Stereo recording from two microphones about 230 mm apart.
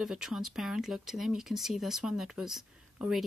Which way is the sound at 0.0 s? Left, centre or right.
Centre.